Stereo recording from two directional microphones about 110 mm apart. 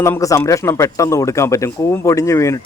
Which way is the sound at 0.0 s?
30° left (ahead or behind).